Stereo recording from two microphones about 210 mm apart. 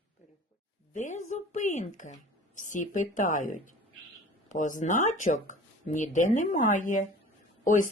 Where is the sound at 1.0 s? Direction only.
35° left (ahead or behind).